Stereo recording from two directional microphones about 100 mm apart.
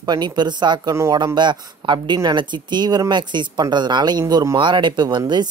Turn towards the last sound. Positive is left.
turn(degrees=-45)  # may be behind; listen again after turning